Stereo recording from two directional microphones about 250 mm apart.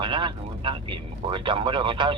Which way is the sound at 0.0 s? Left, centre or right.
Centre.